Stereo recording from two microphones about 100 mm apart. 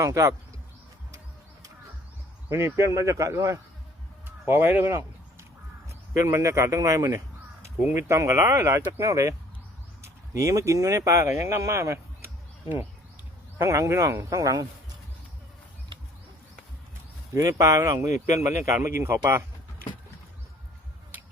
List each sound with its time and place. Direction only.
0.0 s speech: 35° right (ahead or behind)
2.5 s speech: 25° right (ahead or behind)
13.6 s speech: 30° right (ahead or behind)
17.3 s speech: 35° right (ahead or behind)